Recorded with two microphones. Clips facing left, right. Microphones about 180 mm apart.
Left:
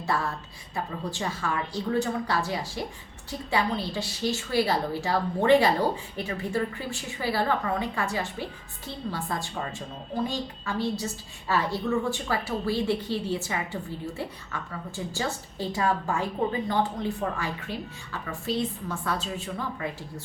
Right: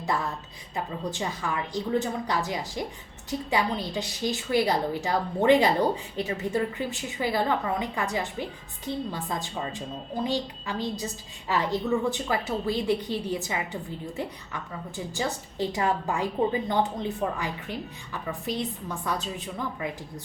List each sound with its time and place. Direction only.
0.1 s a woman's voice: 15° right (ahead or behind)